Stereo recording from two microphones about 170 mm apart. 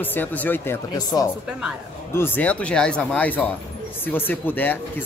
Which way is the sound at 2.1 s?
10° left (ahead or behind).